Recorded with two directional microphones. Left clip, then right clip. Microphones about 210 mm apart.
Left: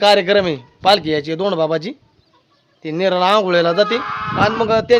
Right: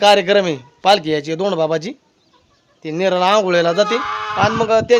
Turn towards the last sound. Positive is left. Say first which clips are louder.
# right 1 dB
turn(degrees=0)  # may be behind; listen again after turning